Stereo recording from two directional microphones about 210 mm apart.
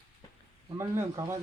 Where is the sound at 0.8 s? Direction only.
15° right (ahead or behind).